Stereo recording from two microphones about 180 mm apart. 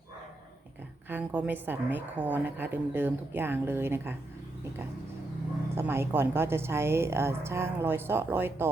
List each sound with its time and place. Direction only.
1.1 s a woman's voice: 10° right (ahead or behind)
5.7 s a woman's voice: 15° right (ahead or behind)